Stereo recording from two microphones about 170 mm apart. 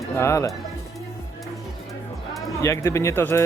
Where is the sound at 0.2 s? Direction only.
15° left (ahead or behind).